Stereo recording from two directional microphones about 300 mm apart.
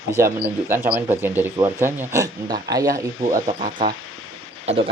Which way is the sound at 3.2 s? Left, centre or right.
Right.